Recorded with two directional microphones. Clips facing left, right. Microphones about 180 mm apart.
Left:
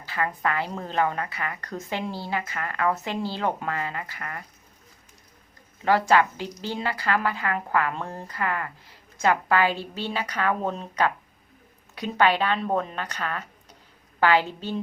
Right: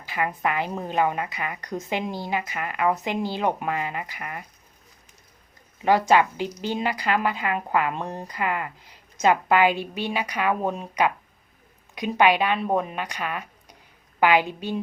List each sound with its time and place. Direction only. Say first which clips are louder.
0.0 s a woman's voice: right 1 dB; 15° right (ahead or behind)
5.8 s a woman's voice: right 1 dB; 20° right (ahead or behind)